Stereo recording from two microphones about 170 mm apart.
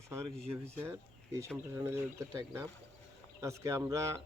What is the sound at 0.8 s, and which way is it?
Speech, 15° right (ahead or behind).